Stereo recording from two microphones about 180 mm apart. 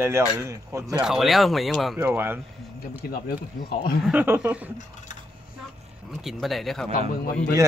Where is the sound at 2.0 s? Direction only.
10° right (ahead or behind).